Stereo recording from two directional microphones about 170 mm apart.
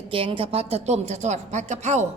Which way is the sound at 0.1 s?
30° right (ahead or behind).